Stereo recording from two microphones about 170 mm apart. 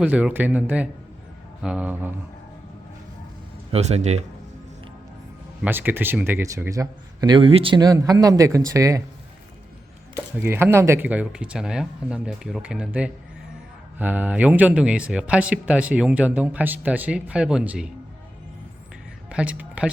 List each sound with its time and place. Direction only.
0.0 s speech: 10° right (ahead or behind)
3.7 s speech: 40° right (ahead or behind)
5.6 s speech: 10° right (ahead or behind)
10.3 s speech: 15° right (ahead or behind)
19.3 s speech: 10° right (ahead or behind)